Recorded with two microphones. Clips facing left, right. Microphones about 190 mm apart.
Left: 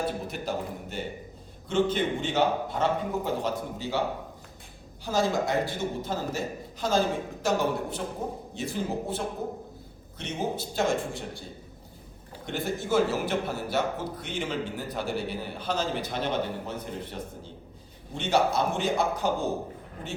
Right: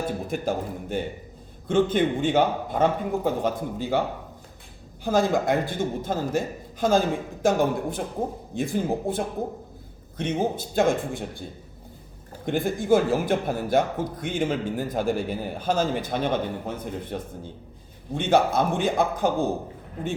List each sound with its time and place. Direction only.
0.3 s a man's voice: 50° right (ahead or behind)
5.0 s a man's voice: 55° right (ahead or behind)
12.5 s a man's voice: 50° right (ahead or behind)